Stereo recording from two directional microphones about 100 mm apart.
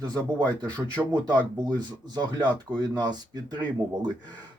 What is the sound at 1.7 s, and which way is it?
Speech, 45° right (ahead or behind).